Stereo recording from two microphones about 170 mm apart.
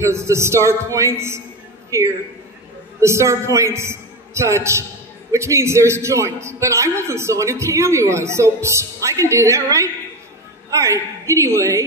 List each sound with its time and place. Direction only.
0.0 s a man's voice: 15° right (ahead or behind)